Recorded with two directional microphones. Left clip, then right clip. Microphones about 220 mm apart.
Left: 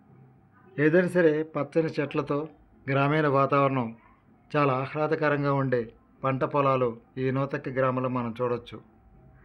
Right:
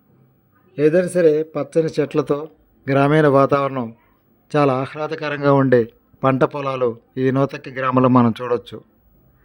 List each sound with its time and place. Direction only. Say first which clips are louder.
0.8 s speech: right 7 dB; 20° right (ahead or behind); by 8.8 s 35° right (ahead or behind)